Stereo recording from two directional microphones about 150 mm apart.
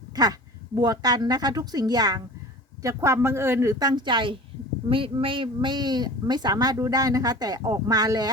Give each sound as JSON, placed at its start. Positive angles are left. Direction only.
{"t": 0.8, "sound": "a woman's voice", "side_deg": -25}